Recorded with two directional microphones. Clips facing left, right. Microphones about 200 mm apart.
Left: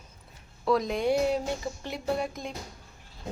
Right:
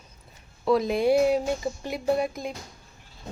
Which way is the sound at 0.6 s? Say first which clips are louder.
Right 4 dB; 5° right (ahead or behind).